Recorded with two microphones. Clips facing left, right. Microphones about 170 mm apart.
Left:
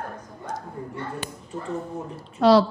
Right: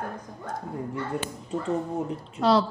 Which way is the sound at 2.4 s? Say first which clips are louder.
Left 5 dB; 75° left (ahead or behind).